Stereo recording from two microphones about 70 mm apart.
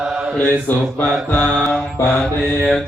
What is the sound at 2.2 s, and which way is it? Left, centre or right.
Mantra, centre.